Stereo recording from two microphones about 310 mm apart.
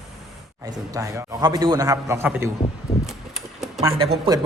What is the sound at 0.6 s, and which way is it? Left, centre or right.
A man's voice, centre.